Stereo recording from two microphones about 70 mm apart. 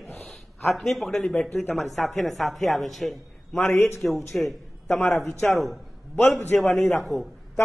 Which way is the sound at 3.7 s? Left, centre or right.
Left.